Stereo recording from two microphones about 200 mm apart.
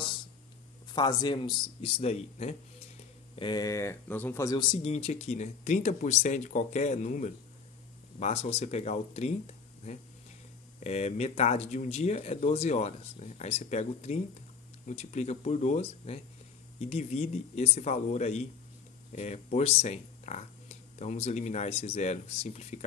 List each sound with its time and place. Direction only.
0.9 s a man's voice: 20° left (ahead or behind)
3.3 s speech: 20° left (ahead or behind)
10.8 s speech: 35° left (ahead or behind)